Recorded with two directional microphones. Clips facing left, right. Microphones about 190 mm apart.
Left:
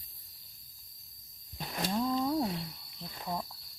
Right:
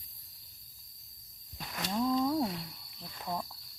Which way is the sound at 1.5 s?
35° left (ahead or behind).